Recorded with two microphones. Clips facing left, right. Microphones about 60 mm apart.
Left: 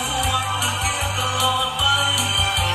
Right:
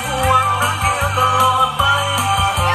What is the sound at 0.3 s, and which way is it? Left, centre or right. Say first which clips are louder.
Music: right 8 dB; right.